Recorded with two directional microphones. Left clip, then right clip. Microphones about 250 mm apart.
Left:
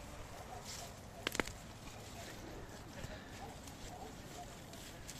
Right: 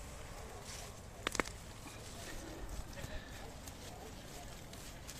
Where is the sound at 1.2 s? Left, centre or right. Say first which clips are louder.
Right 1 dB; centre.